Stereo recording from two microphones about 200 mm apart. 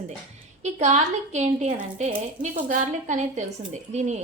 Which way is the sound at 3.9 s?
35° right (ahead or behind).